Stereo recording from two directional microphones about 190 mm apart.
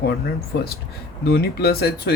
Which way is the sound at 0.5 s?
65° left (ahead or behind).